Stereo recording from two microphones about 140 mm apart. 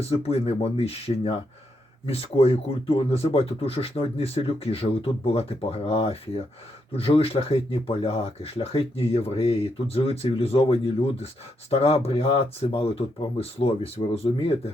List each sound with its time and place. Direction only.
0.0 s speech: 45° left (ahead or behind)